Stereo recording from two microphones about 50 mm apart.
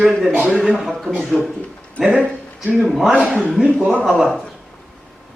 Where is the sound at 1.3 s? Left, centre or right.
Centre.